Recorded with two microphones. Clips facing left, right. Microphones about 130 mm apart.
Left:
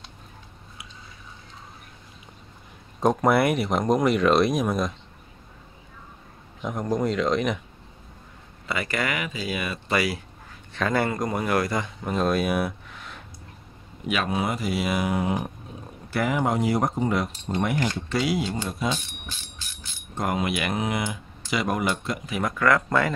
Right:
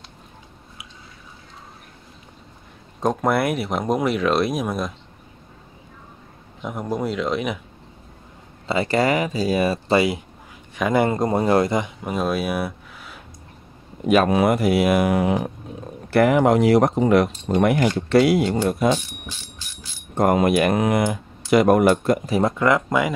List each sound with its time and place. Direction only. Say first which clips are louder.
3.0 s speech: even; centre (ahead or behind)
6.6 s speech: even; 5° right (ahead or behind)
8.6 s speech: right 8 dB; 30° right (ahead or behind)
12.0 s speech: right 1 dB; 10° right (ahead or behind)
14.0 s speech: right 10 dB; 45° right (ahead or behind)
14.3 s speech: right 9 dB; 65° right (ahead or behind)
20.2 s speech: right 9 dB; 50° right (ahead or behind); by 23.1 s 15° right (ahead or behind)